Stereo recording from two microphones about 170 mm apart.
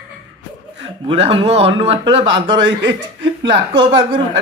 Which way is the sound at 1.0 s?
35° right (ahead or behind).